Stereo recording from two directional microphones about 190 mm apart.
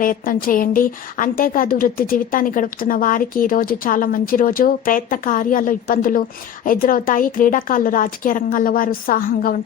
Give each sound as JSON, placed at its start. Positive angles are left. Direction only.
{"t": 0.0, "sound": "speech", "side_deg": 45}